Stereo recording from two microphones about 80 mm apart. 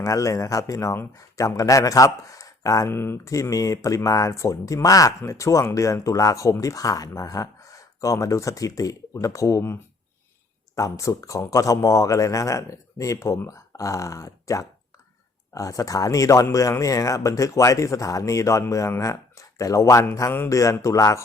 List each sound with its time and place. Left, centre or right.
0.0 s speech: left
2.9 s speech: left
3.2 s speech: left
10.8 s speech: left